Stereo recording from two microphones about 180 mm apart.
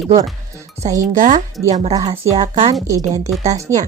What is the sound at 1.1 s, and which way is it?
Speech, 45° right (ahead or behind).